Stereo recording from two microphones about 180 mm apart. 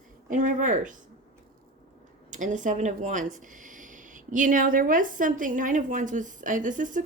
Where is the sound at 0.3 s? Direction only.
45° right (ahead or behind).